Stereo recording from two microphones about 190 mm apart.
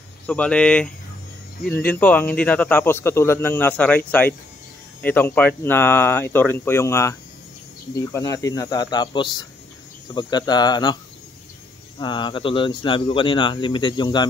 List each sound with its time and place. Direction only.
0.3 s speech: 5° left (ahead or behind); by 11.0 s 20° left (ahead or behind)
12.0 s speech: 25° left (ahead or behind)